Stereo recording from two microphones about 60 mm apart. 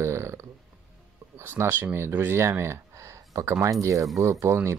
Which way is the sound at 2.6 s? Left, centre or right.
Right.